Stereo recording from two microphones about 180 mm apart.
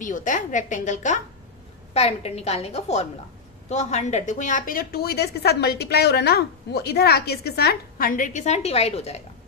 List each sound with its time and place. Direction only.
0.0 s a woman's voice: 45° left (ahead or behind)